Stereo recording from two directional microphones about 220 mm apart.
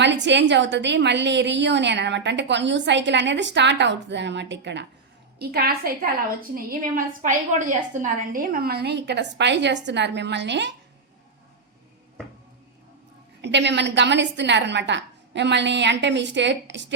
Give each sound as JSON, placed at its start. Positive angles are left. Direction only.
{"t": 0.0, "sound": "a woman's voice", "side_deg": -55}
{"t": 13.4, "sound": "a woman's voice", "side_deg": -50}